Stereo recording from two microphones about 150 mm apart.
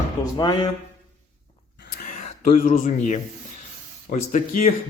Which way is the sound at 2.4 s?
60° left (ahead or behind).